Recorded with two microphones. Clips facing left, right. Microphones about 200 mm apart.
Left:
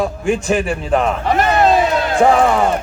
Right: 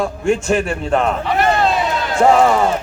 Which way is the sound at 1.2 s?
45° left (ahead or behind).